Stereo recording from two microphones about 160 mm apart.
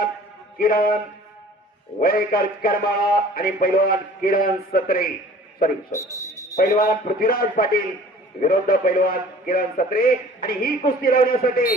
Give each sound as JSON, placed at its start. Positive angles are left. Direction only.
{"t": 0.6, "sound": "a man's voice", "side_deg": 65}
{"t": 2.0, "sound": "a man's voice", "side_deg": 70}
{"t": 5.9, "sound": "a man's voice", "side_deg": 20}
{"t": 6.6, "sound": "a man's voice", "side_deg": 65}